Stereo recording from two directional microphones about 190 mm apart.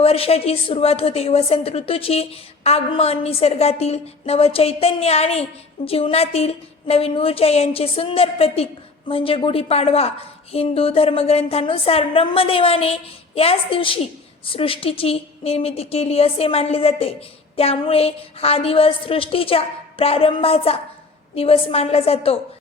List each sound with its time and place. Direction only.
0.0 s a woman's voice: 30° left (ahead or behind)